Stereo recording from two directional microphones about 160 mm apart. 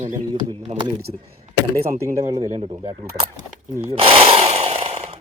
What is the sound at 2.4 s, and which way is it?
Speech, 30° right (ahead or behind).